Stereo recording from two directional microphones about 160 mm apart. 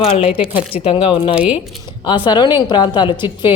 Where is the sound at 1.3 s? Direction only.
10° right (ahead or behind).